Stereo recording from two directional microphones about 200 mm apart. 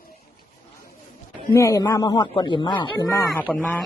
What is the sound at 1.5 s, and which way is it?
Speech, 15° left (ahead or behind).